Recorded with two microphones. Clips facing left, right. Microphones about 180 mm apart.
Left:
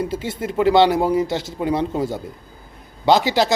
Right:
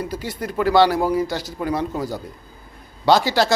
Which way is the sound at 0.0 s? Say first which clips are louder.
Left 3 dB; 25° left (ahead or behind).